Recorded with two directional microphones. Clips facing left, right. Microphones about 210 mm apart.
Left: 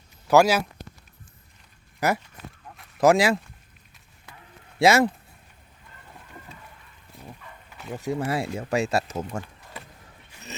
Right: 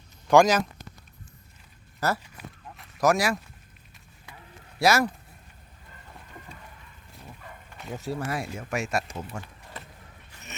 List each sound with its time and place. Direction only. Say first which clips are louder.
0.3 s speech: even; 5° left (ahead or behind)
2.0 s speech: left 3 dB; 15° left (ahead or behind)
4.8 s speech: left 4 dB; 25° left (ahead or behind)
7.9 s speech: left 4 dB; 20° left (ahead or behind); by 9.4 s 40° left (ahead or behind)